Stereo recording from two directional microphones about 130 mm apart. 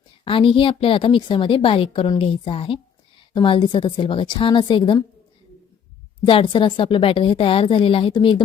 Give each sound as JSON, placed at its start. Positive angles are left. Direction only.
{"t": 0.3, "sound": "a woman's voice", "side_deg": 45}
{"t": 6.2, "sound": "a woman's voice", "side_deg": 45}